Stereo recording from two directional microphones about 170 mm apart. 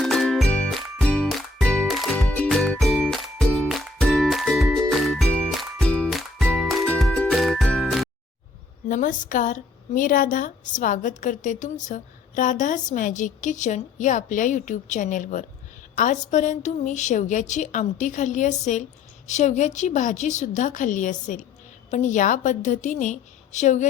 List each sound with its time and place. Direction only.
0.0 s music: centre (ahead or behind)
8.9 s a woman's voice: 50° left (ahead or behind)